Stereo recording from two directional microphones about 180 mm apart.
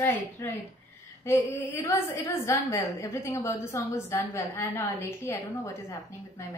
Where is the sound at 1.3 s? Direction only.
15° left (ahead or behind).